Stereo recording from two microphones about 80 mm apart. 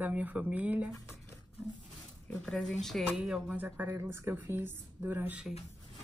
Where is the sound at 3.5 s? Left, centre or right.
Right.